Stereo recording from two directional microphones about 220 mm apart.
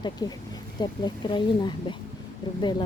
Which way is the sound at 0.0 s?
20° left (ahead or behind).